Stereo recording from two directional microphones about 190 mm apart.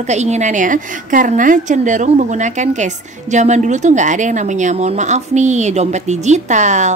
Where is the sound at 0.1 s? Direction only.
35° right (ahead or behind).